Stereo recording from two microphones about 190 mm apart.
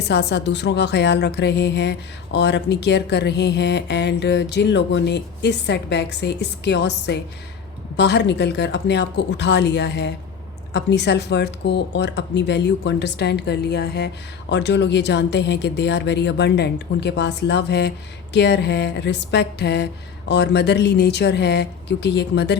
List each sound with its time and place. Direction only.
0.1 s a woman's voice: 60° left (ahead or behind)